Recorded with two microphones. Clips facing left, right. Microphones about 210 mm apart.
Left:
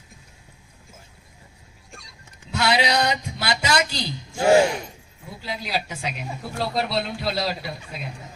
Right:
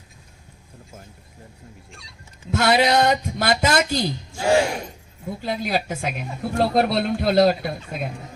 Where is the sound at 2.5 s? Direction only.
50° right (ahead or behind).